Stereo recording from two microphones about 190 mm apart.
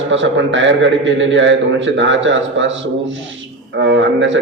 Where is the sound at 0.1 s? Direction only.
75° right (ahead or behind).